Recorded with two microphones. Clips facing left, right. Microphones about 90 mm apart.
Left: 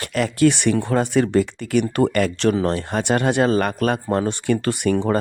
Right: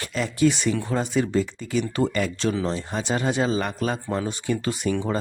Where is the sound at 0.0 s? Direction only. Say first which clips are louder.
Left 4 dB; 65° left (ahead or behind).